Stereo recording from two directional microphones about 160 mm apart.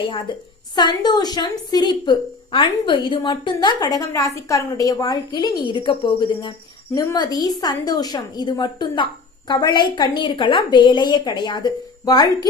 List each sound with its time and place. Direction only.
0.8 s a woman's voice: 25° left (ahead or behind)